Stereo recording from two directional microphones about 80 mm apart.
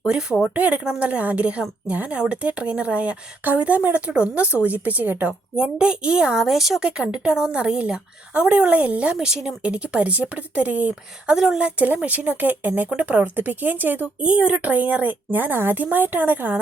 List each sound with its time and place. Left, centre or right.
0.0 s a woman's voice: centre